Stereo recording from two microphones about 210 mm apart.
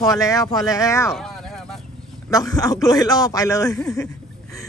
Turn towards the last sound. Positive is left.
turn(degrees=15)  # may be behind; listen again after turning